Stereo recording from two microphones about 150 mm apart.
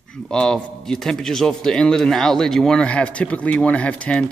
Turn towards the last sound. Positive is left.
turn(degrees=10)  # may be behind; listen again after turning